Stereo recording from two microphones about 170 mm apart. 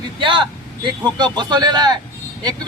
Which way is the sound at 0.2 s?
30° right (ahead or behind).